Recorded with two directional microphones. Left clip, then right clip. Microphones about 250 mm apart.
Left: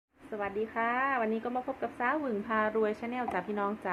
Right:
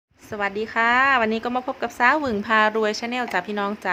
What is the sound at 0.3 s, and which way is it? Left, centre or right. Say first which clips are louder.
A woman's voice: right 9 dB; right.